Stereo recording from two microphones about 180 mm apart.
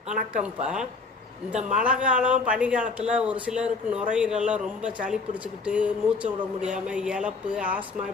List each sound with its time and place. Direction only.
0.1 s speech: 5° right (ahead or behind)